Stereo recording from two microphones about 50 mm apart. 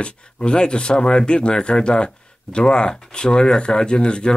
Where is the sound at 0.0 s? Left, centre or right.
Centre.